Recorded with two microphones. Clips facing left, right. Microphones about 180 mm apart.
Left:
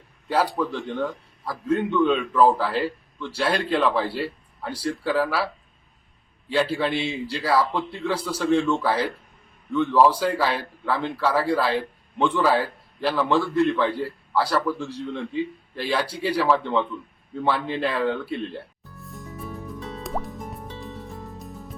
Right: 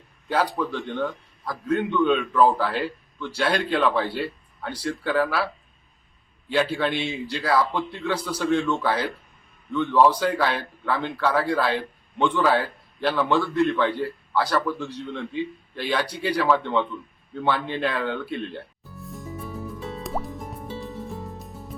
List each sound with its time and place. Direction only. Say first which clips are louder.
0.3 s a man's voice: left 1 dB; centre (ahead or behind)
6.5 s a man's voice: even; centre (ahead or behind)
16.2 s a sound: even; 5° left (ahead or behind)